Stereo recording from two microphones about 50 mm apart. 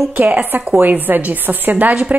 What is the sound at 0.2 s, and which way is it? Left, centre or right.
A woman's voice, right.